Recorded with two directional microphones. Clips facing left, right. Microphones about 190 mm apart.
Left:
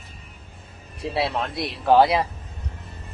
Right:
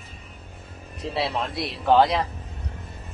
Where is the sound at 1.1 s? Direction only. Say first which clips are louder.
Left 1 dB; centre (ahead or behind).